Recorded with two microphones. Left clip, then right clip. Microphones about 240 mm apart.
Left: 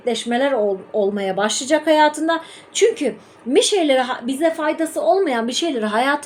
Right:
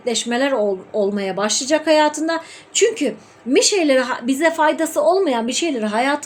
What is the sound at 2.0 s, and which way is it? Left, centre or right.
A woman's voice, centre.